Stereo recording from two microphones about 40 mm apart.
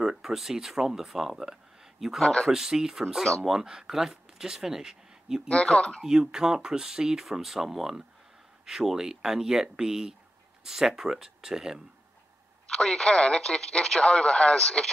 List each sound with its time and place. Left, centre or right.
0.0 s speech: centre
5.5 s speech: left
6.0 s speech: centre
12.6 s speech: centre